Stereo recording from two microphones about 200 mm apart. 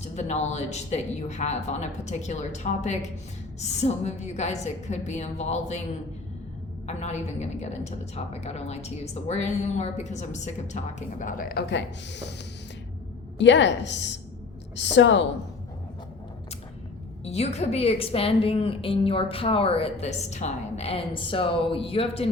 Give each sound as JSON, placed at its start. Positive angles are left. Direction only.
{"t": 0.0, "sound": "a woman's voice", "side_deg": 35}
{"t": 6.8, "sound": "a woman's voice", "side_deg": 35}
{"t": 13.4, "sound": "a woman's voice", "side_deg": 65}
{"t": 17.2, "sound": "a woman's voice", "side_deg": 30}